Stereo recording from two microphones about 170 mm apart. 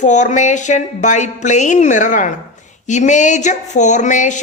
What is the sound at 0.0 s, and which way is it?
A woman's voice, 45° left (ahead or behind).